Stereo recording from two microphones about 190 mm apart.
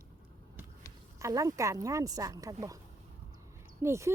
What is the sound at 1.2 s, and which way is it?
Speech, 20° right (ahead or behind).